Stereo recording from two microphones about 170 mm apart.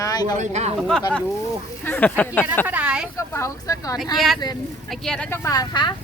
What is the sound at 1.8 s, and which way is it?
Speech, 10° left (ahead or behind).